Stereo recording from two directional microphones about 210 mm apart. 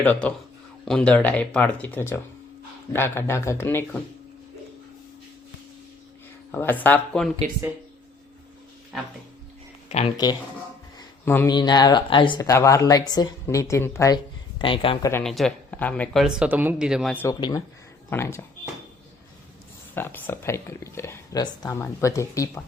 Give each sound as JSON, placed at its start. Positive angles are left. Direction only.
{"t": 0.0, "sound": "speech", "side_deg": 5}
{"t": 6.5, "sound": "speech", "side_deg": 10}
{"t": 10.9, "sound": "a sound", "side_deg": 15}
{"t": 11.5, "sound": "speech", "side_deg": 20}
{"t": 14.6, "sound": "speech", "side_deg": 25}
{"t": 15.1, "sound": "speech", "side_deg": 0}
{"t": 17.2, "sound": "speech", "side_deg": 15}
{"t": 19.9, "sound": "speech", "side_deg": 10}